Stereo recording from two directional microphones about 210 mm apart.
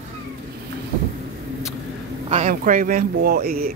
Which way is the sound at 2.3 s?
35° right (ahead or behind).